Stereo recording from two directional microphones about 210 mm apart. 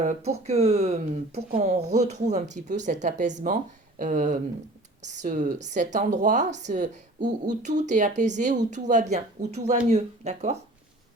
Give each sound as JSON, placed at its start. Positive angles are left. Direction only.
{"t": 0.0, "sound": "a woman's voice", "side_deg": -30}